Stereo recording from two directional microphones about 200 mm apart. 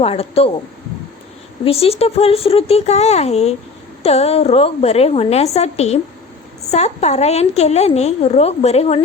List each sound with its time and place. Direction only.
0.0 s speech: 30° left (ahead or behind)
1.6 s a woman's voice: 30° left (ahead or behind)